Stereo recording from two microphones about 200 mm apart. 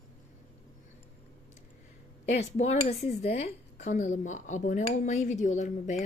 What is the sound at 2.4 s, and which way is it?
A woman's voice, 35° left (ahead or behind).